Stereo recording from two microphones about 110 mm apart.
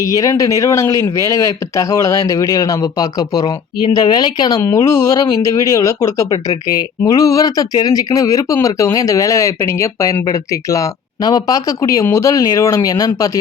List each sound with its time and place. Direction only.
0.0 s speech: 30° left (ahead or behind)
4.6 s speech: 25° left (ahead or behind)